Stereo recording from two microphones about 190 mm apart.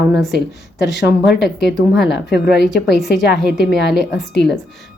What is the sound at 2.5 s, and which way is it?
A woman's voice, centre (ahead or behind).